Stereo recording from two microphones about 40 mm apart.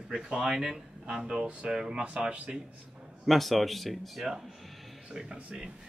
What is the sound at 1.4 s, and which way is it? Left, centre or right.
Speech, right.